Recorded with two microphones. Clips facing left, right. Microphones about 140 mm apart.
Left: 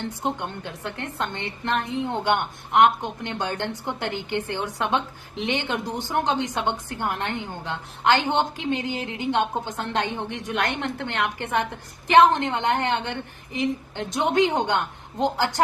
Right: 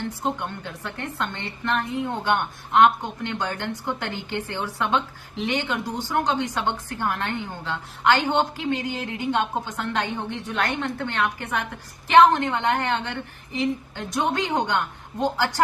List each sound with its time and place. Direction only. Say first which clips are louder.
0.2 s a woman's voice: even; 20° left (ahead or behind)